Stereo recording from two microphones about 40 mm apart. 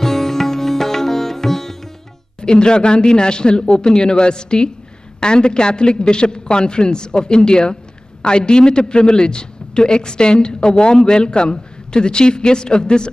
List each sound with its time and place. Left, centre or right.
0.0 s sitar: centre
2.4 s a man's voice: left